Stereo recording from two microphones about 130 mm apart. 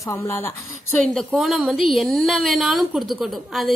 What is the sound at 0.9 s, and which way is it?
A woman's voice, centre (ahead or behind).